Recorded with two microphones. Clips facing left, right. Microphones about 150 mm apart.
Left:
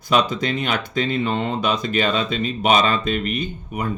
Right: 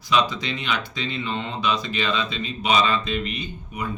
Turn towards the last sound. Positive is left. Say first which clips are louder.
# left 5 dB
turn(degrees=50)  # may be behind; listen again after turning